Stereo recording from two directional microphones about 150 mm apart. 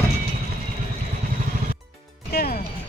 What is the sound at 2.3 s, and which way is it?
Music, 90° left.